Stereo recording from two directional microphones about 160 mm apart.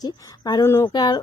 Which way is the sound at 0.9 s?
25° left (ahead or behind).